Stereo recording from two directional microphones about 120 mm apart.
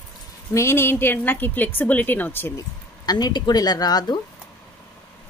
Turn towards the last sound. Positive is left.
turn(degrees=35)  # may be behind; listen again after turning